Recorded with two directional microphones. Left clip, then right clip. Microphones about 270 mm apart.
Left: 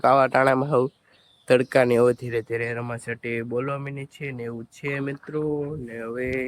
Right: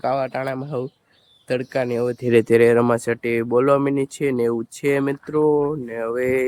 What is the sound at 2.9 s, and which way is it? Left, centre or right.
Speech, centre.